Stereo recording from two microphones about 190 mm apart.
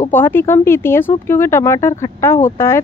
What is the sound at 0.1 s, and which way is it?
Speech, 10° left (ahead or behind).